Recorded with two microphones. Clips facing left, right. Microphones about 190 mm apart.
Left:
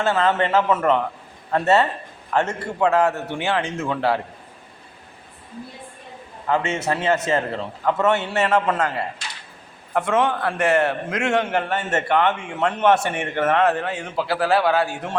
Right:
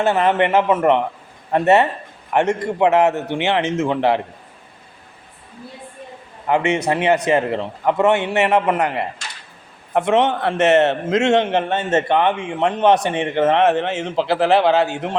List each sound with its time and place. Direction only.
0.0 s a man's voice: 20° right (ahead or behind)
6.5 s a man's voice: 15° right (ahead or behind)